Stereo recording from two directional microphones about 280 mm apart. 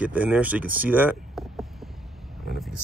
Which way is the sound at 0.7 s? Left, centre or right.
Centre.